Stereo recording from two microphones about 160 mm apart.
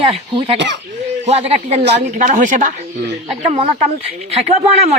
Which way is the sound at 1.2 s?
40° right (ahead or behind).